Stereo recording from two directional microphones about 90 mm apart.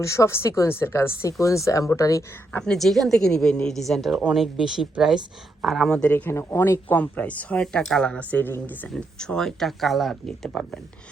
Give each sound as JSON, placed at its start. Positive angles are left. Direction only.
{"t": 0.0, "sound": "speech", "side_deg": 35}
{"t": 2.5, "sound": "speech", "side_deg": 10}
{"t": 6.5, "sound": "speech", "side_deg": 30}
{"t": 6.8, "sound": "speech", "side_deg": 20}
{"t": 8.9, "sound": "speech", "side_deg": 10}